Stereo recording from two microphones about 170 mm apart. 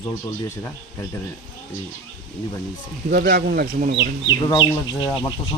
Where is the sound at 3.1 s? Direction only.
65° right (ahead or behind).